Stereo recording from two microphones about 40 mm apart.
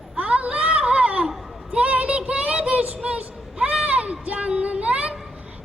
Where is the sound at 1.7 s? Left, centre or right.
Right.